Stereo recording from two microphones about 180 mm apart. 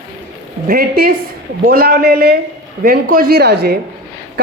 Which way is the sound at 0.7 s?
55° right (ahead or behind).